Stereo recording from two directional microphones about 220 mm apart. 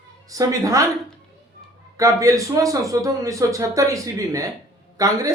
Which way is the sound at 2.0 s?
15° right (ahead or behind).